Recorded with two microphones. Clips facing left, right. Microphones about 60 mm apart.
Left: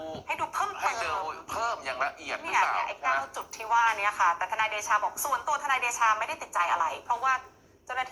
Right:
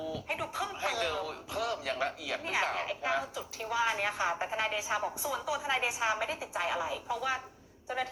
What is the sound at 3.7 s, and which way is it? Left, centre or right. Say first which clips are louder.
Speech: left 7 dB; left.